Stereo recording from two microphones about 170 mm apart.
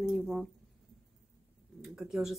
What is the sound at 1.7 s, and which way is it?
Speech, 5° right (ahead or behind).